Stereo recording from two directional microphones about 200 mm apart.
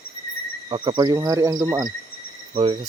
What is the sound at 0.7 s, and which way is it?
Speech, 25° right (ahead or behind).